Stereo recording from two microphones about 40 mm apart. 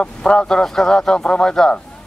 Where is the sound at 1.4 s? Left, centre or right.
Centre.